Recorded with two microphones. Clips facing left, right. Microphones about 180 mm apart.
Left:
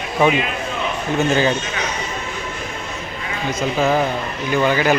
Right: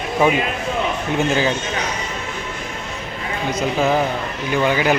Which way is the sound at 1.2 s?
5° right (ahead or behind).